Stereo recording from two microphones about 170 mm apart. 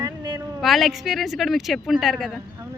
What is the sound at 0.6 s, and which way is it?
Speech, centre (ahead or behind).